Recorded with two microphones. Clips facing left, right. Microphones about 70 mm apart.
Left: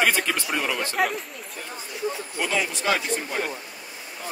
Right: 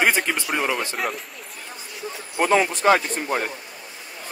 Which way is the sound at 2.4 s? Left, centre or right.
Right.